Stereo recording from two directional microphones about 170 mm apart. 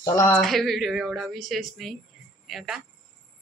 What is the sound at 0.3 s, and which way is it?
Speech, centre (ahead or behind).